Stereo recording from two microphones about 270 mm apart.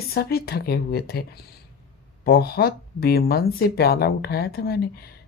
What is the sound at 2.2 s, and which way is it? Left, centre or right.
Speech, left.